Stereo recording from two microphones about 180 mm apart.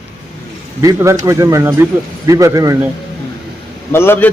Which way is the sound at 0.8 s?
15° right (ahead or behind).